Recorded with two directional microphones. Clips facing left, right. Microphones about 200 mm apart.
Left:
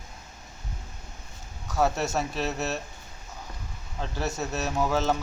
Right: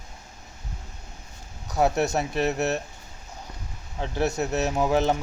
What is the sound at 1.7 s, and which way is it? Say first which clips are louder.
Speech: right 3 dB; 15° right (ahead or behind).